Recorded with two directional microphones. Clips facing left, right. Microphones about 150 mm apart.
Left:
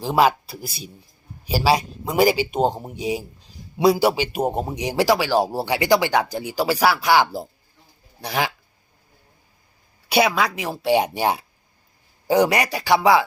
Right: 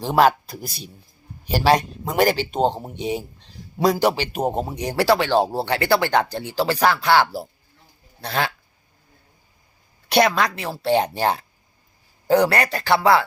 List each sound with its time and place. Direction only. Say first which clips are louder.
0.0 s speech: right 1 dB; centre (ahead or behind)
10.1 s speech: right 1 dB; 5° left (ahead or behind)